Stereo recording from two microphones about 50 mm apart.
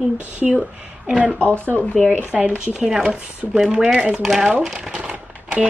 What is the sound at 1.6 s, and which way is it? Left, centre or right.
Speech, left.